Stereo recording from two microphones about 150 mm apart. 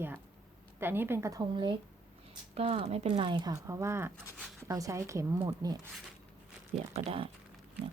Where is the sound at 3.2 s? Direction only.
30° right (ahead or behind).